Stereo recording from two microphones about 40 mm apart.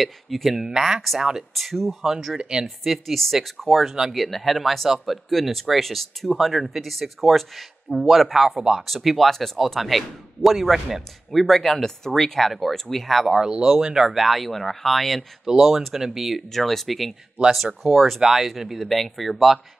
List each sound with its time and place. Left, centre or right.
0.0 s speech: centre
1.5 s speech: centre
8.5 s speech: centre
8.8 s speech: centre
13.3 s speech: centre
17.4 s speech: right
17.8 s speech: centre